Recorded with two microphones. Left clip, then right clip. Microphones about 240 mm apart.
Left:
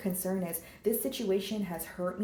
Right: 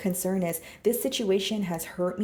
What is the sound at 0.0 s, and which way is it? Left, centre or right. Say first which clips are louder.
Speech: right 6 dB; right.